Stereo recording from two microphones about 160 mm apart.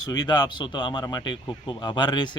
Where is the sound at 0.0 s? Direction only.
25° left (ahead or behind).